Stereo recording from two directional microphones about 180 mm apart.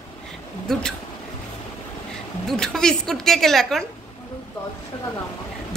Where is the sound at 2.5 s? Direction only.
5° left (ahead or behind).